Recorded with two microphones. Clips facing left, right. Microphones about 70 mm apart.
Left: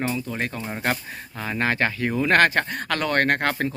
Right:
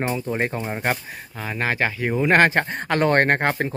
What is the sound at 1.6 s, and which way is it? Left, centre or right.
Speech, centre.